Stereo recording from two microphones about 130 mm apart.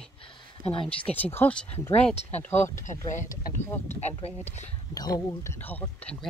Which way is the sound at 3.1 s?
80° left.